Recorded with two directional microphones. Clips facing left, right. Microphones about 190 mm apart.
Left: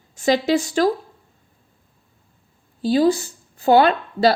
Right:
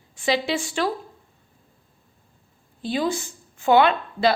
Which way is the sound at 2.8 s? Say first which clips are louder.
Left 8 dB; 35° left (ahead or behind).